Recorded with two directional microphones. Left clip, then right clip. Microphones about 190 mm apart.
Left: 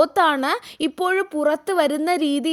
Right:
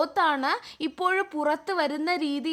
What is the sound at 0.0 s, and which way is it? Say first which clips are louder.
A woman's voice: left 6 dB; 30° left (ahead or behind).